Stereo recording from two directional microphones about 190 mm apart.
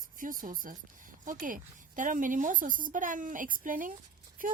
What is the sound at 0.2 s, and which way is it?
Speech, 45° right (ahead or behind).